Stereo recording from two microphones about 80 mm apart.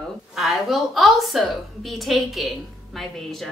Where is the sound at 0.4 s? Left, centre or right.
Centre.